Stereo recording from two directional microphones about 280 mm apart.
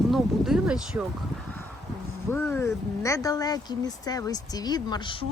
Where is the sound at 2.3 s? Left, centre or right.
Centre.